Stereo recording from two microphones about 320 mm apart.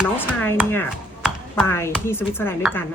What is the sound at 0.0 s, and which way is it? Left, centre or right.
Speech, centre.